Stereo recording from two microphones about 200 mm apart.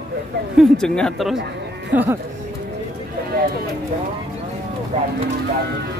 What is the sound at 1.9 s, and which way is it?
Speech, 10° right (ahead or behind).